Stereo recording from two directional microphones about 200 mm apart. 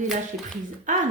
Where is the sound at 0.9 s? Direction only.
40° right (ahead or behind).